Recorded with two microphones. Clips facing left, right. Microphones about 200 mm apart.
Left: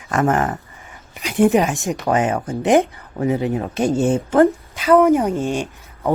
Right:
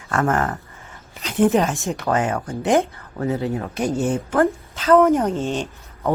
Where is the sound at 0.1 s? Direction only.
15° left (ahead or behind).